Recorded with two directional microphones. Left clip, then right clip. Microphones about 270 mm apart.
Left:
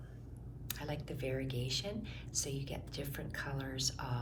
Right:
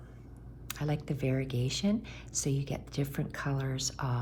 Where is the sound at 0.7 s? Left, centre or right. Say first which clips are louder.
Right 6 dB; right.